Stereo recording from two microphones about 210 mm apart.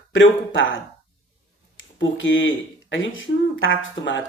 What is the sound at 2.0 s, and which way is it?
Speech, 65° left (ahead or behind).